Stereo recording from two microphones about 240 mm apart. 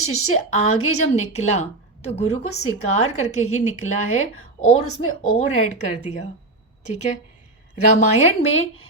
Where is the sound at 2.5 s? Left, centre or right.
Left.